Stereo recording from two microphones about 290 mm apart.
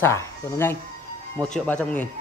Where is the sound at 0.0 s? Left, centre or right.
Centre.